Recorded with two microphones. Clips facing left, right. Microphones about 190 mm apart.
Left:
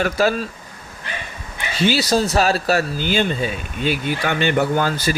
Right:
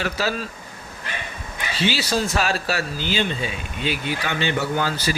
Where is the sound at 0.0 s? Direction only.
50° left (ahead or behind).